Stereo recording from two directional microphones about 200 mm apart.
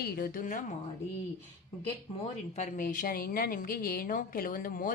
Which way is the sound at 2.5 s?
35° left (ahead or behind).